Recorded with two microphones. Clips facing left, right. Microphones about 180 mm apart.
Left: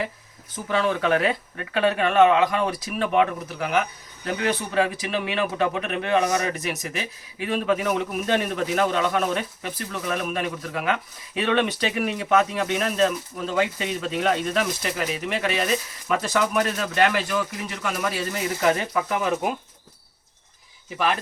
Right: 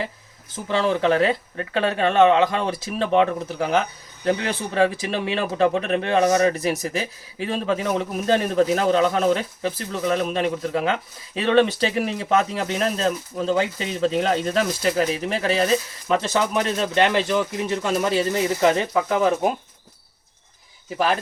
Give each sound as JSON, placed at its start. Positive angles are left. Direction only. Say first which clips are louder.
{"t": 0.5, "sound": "speech", "louder": "right 2 dB", "side_deg": -30}